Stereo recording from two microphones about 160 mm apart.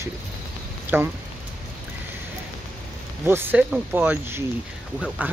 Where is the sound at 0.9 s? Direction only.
15° right (ahead or behind).